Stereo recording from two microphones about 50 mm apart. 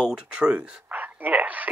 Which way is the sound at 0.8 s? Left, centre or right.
Right.